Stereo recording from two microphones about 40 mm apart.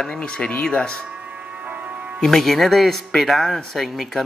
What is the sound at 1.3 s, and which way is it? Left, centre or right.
Music, right.